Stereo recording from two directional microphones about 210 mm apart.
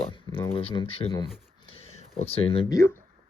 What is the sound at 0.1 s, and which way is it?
Speech, 25° left (ahead or behind).